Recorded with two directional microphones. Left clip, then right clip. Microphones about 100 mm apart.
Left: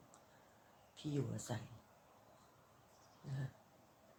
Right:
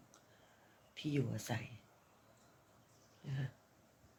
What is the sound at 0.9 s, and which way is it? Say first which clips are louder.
Speech: right 4 dB; 5° right (ahead or behind).